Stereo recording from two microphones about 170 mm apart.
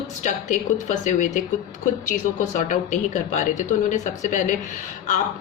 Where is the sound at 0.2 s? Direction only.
45° left (ahead or behind).